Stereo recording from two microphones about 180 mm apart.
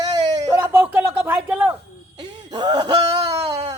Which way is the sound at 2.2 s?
25° right (ahead or behind).